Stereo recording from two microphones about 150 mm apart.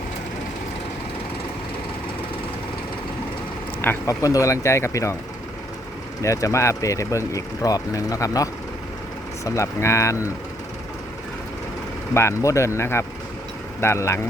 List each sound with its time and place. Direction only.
3.8 s speech: 20° left (ahead or behind)
6.2 s speech: 20° left (ahead or behind)
12.1 s speech: 20° left (ahead or behind)